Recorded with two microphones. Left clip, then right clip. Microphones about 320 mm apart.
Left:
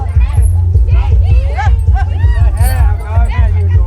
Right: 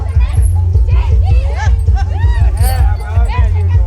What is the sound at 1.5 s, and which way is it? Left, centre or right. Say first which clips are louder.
Music: left 7 dB; left.